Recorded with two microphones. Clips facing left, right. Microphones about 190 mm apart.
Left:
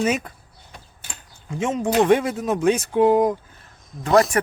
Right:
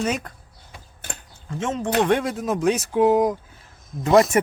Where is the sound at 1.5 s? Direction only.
10° left (ahead or behind).